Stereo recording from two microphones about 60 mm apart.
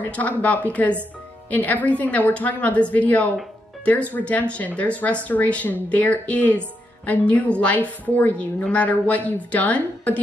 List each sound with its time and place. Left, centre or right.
0.0 s speech: left